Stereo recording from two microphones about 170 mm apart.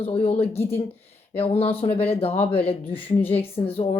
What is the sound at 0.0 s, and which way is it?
Speech, 30° left (ahead or behind).